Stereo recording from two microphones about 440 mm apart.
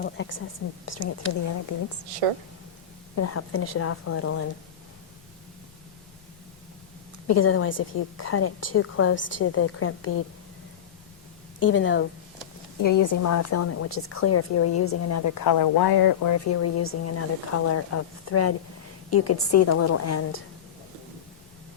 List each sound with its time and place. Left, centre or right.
0.0 s a woman's voice: left
3.2 s a woman's voice: left
7.3 s a woman's voice: left
11.6 s a woman's voice: left
12.8 s a woman's voice: left